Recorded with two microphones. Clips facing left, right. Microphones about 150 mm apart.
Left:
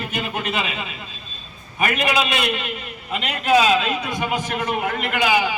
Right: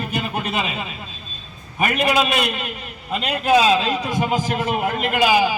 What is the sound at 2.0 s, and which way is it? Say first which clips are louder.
A man's voice: right 4 dB; 35° right (ahead or behind).